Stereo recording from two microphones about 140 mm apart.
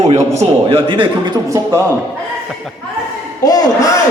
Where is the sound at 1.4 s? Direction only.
20° right (ahead or behind).